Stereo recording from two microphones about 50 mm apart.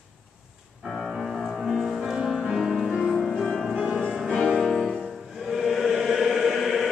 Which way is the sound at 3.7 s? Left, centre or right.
Centre.